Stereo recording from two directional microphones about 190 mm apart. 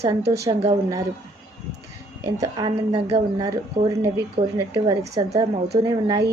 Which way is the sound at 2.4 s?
20° right (ahead or behind).